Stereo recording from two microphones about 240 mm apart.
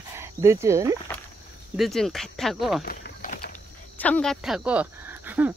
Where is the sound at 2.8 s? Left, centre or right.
Left.